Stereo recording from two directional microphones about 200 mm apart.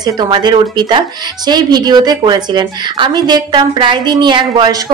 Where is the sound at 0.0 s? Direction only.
20° right (ahead or behind).